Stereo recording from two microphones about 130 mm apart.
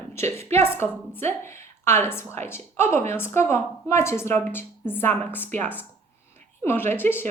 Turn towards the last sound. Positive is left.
turn(degrees=15)  # may be behind; listen again after turning